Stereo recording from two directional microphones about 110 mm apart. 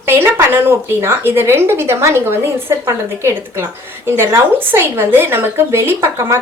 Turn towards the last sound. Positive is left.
turn(degrees=-25)  # may be behind; listen again after turning